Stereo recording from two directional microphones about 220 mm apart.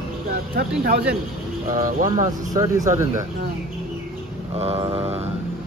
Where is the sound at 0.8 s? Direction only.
45° right (ahead or behind).